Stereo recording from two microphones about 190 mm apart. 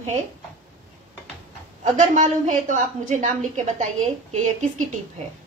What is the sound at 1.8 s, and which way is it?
A woman's voice, 40° right (ahead or behind).